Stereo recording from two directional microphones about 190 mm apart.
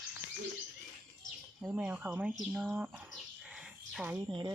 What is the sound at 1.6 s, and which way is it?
Speech, 10° right (ahead or behind).